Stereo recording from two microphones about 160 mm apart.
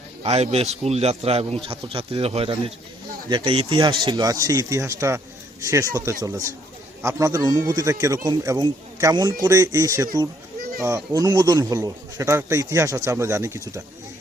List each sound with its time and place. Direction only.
0.2 s a man's voice: 40° right (ahead or behind); by 13.8 s 15° right (ahead or behind)